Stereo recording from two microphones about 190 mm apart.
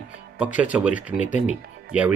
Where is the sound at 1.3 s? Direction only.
40° left (ahead or behind).